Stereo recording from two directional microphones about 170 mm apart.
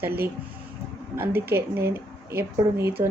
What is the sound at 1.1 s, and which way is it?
A woman's voice, 15° right (ahead or behind).